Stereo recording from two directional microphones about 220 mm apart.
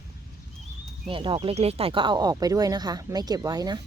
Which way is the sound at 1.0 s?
20° right (ahead or behind).